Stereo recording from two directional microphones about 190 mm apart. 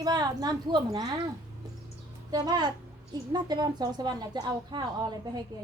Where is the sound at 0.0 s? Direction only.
20° right (ahead or behind).